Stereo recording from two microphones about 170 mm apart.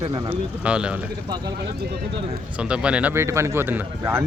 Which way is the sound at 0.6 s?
5° right (ahead or behind).